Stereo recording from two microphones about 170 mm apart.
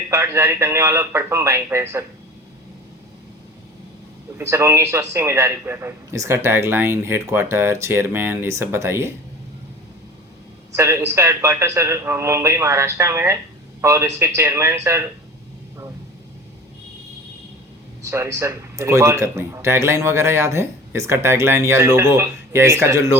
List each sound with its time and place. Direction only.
0.1 s speech: 15° right (ahead or behind)
4.4 s speech: 15° right (ahead or behind)
10.8 s speech: 15° right (ahead or behind)
18.0 s speech: 15° right (ahead or behind)